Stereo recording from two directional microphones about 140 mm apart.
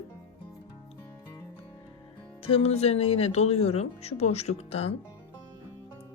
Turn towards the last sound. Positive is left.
turn(degrees=45)  # may be behind; listen again after turning